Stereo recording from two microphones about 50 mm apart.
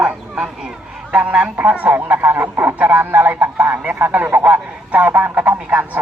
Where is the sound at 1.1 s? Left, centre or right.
Right.